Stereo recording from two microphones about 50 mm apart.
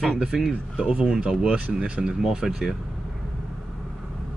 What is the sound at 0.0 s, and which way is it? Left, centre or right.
Speech, centre.